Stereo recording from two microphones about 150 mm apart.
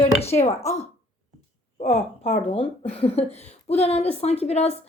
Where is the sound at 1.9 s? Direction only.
40° left (ahead or behind).